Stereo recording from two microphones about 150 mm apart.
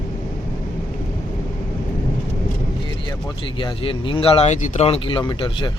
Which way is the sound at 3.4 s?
35° left (ahead or behind).